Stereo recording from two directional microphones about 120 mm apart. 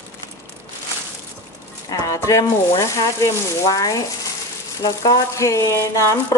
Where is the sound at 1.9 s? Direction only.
30° left (ahead or behind).